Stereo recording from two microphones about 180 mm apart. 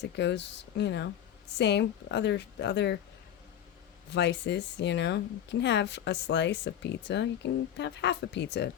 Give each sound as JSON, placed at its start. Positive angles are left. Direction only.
{"t": 0.0, "sound": "speech", "side_deg": 75}
{"t": 4.1, "sound": "speech", "side_deg": 75}